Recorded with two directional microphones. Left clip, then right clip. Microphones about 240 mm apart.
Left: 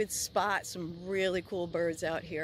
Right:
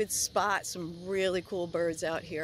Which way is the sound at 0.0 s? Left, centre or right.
Centre.